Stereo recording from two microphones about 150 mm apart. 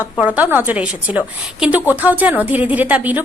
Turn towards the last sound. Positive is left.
turn(degrees=-10)  # may be behind; listen again after turning